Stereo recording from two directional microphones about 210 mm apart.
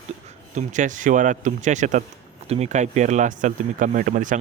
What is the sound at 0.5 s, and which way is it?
Speech, 35° right (ahead or behind).